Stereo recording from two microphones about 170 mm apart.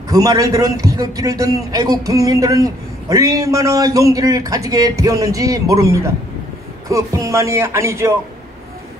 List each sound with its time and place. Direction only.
0.1 s a man's voice: 20° right (ahead or behind)
6.9 s music: 20° right (ahead or behind)